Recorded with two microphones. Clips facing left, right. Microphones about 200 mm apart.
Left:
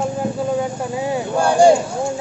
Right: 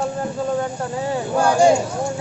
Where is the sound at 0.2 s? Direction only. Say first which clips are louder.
Left 2 dB; 10° left (ahead or behind).